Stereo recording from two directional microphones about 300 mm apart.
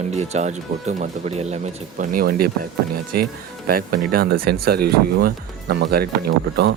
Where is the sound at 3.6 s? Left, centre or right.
Right.